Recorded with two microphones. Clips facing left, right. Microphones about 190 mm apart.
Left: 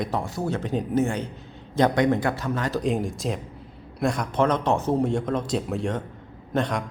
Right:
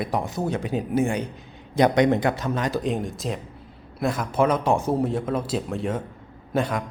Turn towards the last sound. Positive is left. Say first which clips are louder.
# right 1 dB
turn(degrees=-5)  # may be behind; listen again after turning